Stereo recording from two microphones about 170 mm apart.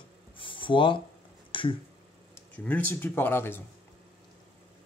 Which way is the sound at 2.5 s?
10° left (ahead or behind).